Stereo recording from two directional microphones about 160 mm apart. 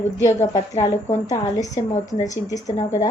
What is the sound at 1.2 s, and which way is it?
A woman's voice, 20° left (ahead or behind).